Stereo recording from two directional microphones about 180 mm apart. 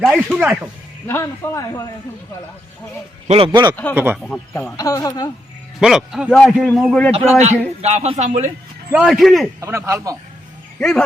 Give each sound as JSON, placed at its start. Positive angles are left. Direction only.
{"t": 0.0, "sound": "speech", "side_deg": -10}
{"t": 1.0, "sound": "speech", "side_deg": 15}
{"t": 3.2, "sound": "a man's voice", "side_deg": -30}
{"t": 3.9, "sound": "speech", "side_deg": -10}
{"t": 4.5, "sound": "a woman's voice", "side_deg": 15}
{"t": 5.8, "sound": "a man's voice", "side_deg": -5}
{"t": 7.1, "sound": "speech", "side_deg": -35}
{"t": 8.9, "sound": "a man's voice", "side_deg": -5}
{"t": 9.6, "sound": "speech", "side_deg": -15}
{"t": 10.8, "sound": "speech", "side_deg": 5}